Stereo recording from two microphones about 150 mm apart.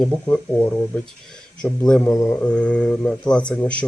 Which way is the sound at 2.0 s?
20° left (ahead or behind).